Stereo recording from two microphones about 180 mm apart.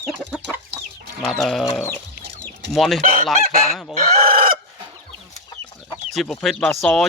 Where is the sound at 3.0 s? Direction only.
50° right (ahead or behind).